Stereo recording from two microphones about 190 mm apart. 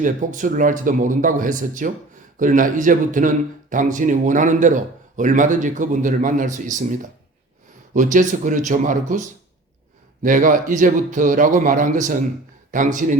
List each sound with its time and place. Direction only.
0.0 s speech: 40° right (ahead or behind)
10.2 s speech: 45° right (ahead or behind)